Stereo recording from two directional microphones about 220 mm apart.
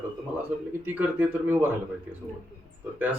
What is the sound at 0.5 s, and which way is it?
Speech, 10° right (ahead or behind).